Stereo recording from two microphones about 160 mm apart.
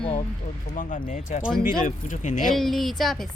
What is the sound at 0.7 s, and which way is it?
Speech, 55° left (ahead or behind).